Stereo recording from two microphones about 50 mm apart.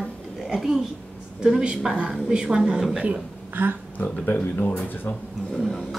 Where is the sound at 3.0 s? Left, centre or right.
Right.